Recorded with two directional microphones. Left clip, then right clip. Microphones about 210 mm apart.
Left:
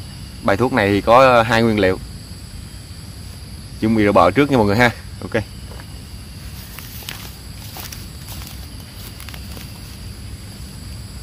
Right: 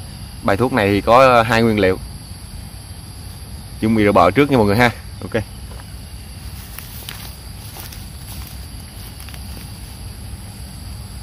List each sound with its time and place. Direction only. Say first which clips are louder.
0.5 s speech: even; 15° right (ahead or behind)
3.8 s speech: even; 20° right (ahead or behind)